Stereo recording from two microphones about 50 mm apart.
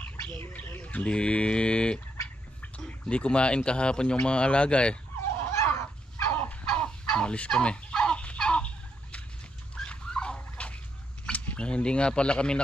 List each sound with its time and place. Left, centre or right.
0.7 s bird: left
1.0 s speech: left
5.4 s dog: left
6.3 s a sound: left
6.8 s fowl: left
9.8 s dog: centre
11.3 s speech: left